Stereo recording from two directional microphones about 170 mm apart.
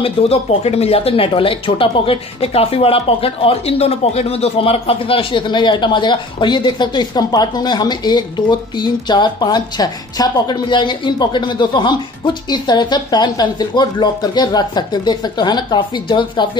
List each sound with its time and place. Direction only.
0.0 s speech: 35° left (ahead or behind)